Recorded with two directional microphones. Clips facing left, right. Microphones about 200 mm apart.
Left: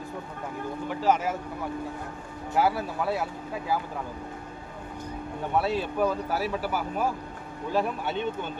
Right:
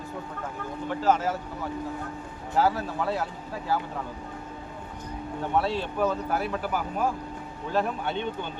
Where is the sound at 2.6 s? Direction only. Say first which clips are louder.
Right 1 dB; 10° left (ahead or behind).